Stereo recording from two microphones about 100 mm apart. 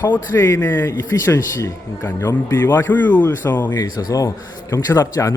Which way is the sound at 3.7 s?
40° left (ahead or behind).